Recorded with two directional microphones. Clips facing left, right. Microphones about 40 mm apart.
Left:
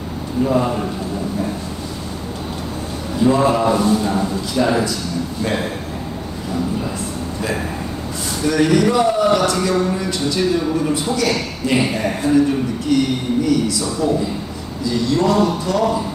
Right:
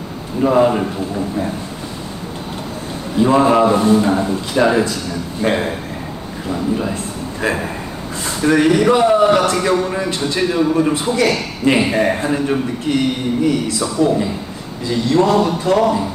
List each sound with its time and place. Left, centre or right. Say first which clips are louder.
0.4 s a man's voice: right 4 dB; right
3.3 s music: right 3 dB; right
5.4 s a man's voice: right 5 dB; right
7.4 s music: right 5 dB; right
8.3 s a man's voice: right 3 dB; right
15.1 s music: right 3 dB; right